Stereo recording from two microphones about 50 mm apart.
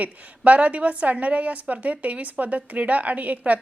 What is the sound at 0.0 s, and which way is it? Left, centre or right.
A woman's voice, right.